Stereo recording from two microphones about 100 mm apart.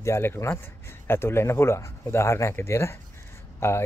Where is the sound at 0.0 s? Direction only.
25° left (ahead or behind).